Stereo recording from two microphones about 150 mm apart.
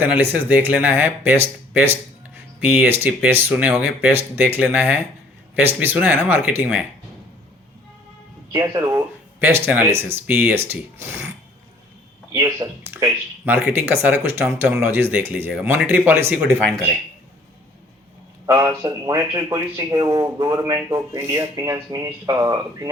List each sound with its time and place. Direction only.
0.0 s speech: 10° right (ahead or behind)
8.5 s speech: 25° right (ahead or behind)
12.3 s speech: 20° right (ahead or behind)
18.4 s speech: 20° right (ahead or behind)